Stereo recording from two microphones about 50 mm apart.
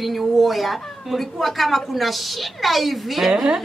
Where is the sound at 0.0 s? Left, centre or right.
Centre.